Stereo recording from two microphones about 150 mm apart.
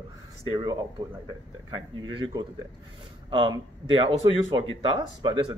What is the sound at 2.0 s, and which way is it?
Speech, 30° right (ahead or behind).